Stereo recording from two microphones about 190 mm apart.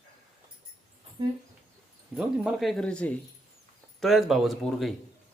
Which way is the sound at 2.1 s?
5° right (ahead or behind).